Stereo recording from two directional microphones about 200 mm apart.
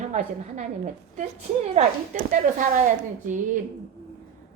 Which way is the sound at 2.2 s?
40° right (ahead or behind).